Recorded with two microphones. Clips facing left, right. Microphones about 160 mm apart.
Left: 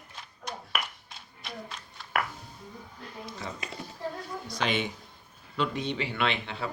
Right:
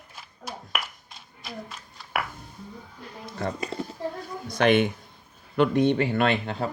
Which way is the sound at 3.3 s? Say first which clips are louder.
Right 10 dB; 55° right (ahead or behind).